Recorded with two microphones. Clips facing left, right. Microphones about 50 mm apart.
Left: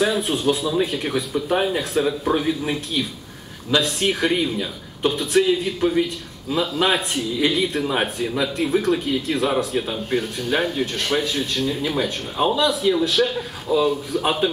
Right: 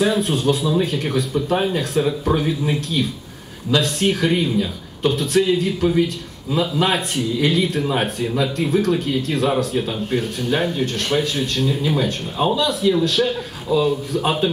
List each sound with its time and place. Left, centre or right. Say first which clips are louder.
0.0 s speech: right 2 dB; centre
7.3 s speech: right 1 dB; centre